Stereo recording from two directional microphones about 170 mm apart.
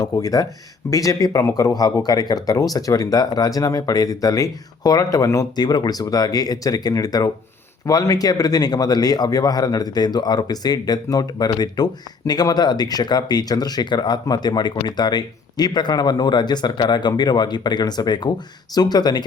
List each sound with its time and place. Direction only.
0.0 s speech: 20° left (ahead or behind)